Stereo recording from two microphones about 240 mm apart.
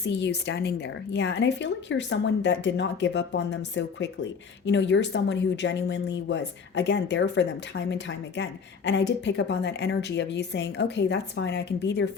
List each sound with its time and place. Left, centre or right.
0.0 s speech: left